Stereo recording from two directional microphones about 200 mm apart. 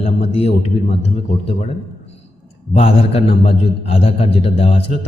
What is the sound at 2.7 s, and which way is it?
A man's voice, 30° left (ahead or behind).